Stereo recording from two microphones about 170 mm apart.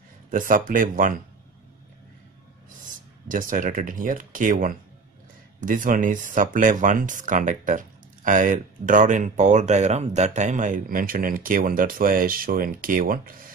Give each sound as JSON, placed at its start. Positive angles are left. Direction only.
{"t": 0.3, "sound": "speech", "side_deg": -50}
{"t": 3.3, "sound": "speech", "side_deg": -50}